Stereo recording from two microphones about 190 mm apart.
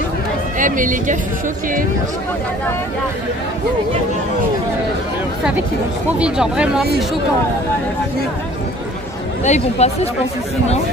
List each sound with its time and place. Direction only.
0.6 s a woman's voice: 45° right (ahead or behind)
6.1 s speech: 5° right (ahead or behind)
9.4 s speech: 35° left (ahead or behind)